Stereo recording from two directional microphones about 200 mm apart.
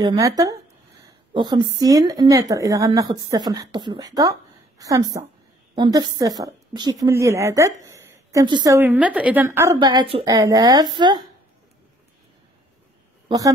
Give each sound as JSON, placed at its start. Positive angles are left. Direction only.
{"t": 0.0, "sound": "a woman's voice", "side_deg": -20}
{"t": 9.8, "sound": "a woman's voice", "side_deg": -20}